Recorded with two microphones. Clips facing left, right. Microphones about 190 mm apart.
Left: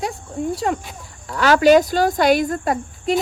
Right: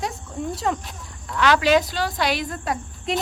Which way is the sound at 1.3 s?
40° left (ahead or behind).